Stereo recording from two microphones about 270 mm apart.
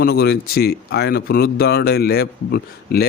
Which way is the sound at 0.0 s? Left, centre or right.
Left.